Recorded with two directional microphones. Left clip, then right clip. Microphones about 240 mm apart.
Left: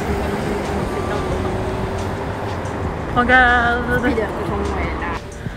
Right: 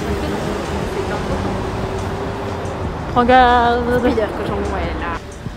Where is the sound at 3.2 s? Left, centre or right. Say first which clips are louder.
Right 2 dB; centre.